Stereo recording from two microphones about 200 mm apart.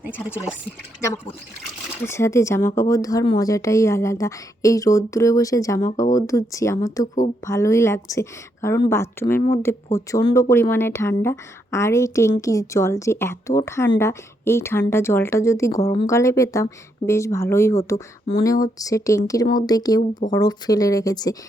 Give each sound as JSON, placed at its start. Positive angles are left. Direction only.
{"t": 1.1, "sound": "a woman's voice", "side_deg": 15}